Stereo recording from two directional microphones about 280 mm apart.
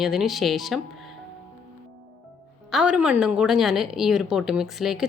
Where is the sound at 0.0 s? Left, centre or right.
Centre.